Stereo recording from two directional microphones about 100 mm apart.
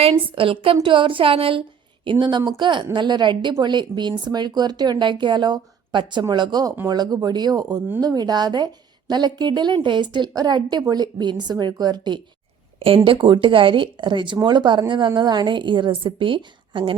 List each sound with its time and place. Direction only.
0.0 s a woman's voice: 65° right (ahead or behind)
2.0 s a woman's voice: 55° right (ahead or behind)
13.1 s a woman's voice: 60° right (ahead or behind)